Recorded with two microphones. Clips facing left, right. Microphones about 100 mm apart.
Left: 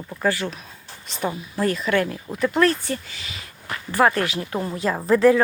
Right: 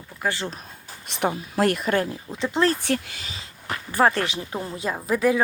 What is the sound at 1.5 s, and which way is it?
Speech, 65° right (ahead or behind).